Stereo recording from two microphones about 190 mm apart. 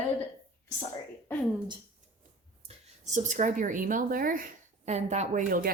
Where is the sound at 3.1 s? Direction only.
40° right (ahead or behind).